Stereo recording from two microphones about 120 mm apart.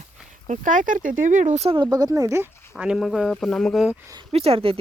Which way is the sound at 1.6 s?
40° right (ahead or behind).